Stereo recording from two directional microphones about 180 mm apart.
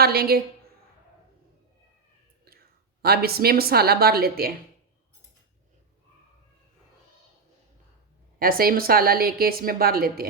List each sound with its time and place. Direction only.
0.0 s a woman's voice: 60° right (ahead or behind)
3.0 s a woman's voice: 60° right (ahead or behind)
8.4 s a woman's voice: 55° right (ahead or behind)